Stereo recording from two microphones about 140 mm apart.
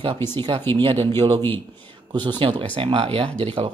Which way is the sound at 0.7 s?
40° right (ahead or behind).